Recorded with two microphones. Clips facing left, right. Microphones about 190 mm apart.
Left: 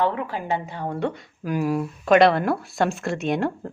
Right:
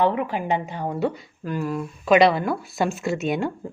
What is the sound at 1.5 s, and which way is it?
Speech, 10° left (ahead or behind).